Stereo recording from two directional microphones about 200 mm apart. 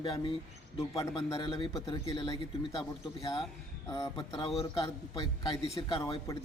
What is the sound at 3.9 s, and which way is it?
A man's voice, 20° left (ahead or behind).